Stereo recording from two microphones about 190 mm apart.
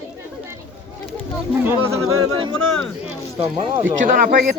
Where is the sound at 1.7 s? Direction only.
15° right (ahead or behind).